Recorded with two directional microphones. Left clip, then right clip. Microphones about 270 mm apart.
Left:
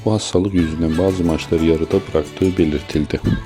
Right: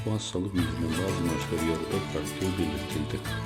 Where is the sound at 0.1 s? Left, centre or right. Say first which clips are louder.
Left 15 dB; left.